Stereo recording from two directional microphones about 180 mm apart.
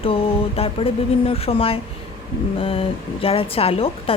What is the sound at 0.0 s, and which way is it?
A woman's voice, 30° left (ahead or behind).